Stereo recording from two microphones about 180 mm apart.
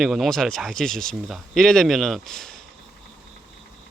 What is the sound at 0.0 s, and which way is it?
Speech, centre (ahead or behind).